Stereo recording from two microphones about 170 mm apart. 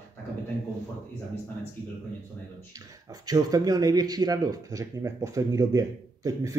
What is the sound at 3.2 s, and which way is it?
Speech, 20° right (ahead or behind).